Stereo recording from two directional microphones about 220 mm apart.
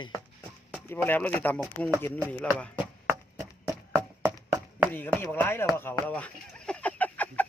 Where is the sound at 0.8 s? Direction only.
10° left (ahead or behind).